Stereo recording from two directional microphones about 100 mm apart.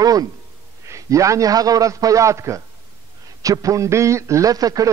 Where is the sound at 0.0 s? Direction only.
40° right (ahead or behind).